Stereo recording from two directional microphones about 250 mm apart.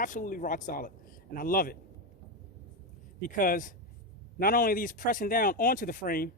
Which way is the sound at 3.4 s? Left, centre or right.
Left.